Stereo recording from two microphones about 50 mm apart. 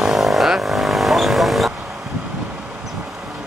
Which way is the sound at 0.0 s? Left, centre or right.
Centre.